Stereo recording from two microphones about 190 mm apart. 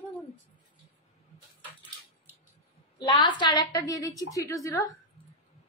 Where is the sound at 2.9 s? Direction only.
20° left (ahead or behind).